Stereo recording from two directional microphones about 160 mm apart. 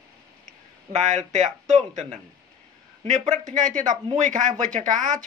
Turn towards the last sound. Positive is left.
turn(degrees=-55)  # may be behind; listen again after turning